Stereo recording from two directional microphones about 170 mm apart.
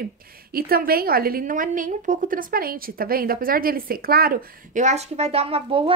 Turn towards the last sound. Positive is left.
turn(degrees=-30)  # may be behind; listen again after turning